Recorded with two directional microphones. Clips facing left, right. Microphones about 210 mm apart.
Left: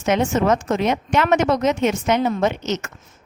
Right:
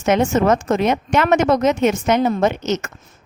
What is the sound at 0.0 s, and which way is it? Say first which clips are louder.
A woman's voice: right 3 dB; 45° right (ahead or behind).